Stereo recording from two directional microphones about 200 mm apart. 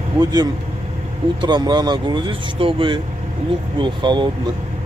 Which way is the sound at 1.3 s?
20° right (ahead or behind).